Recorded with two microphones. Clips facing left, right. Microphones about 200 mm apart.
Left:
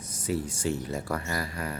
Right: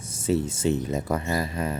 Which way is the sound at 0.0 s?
25° right (ahead or behind).